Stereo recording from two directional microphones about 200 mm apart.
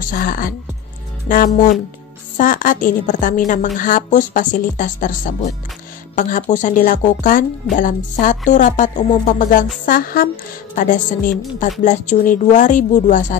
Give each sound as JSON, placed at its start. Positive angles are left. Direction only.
{"t": 0.0, "sound": "a woman's voice", "side_deg": 40}